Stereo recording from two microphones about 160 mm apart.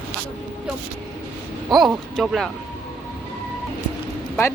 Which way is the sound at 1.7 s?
Centre (ahead or behind).